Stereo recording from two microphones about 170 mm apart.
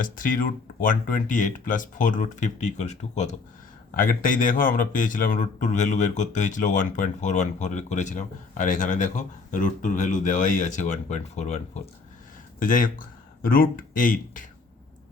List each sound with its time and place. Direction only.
0.0 s speech: 55° left (ahead or behind)
3.9 s speech: 55° left (ahead or behind)
12.5 s speech: 55° left (ahead or behind)